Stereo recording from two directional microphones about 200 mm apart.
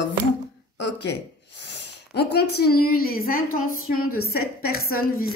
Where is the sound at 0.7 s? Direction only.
60° left (ahead or behind).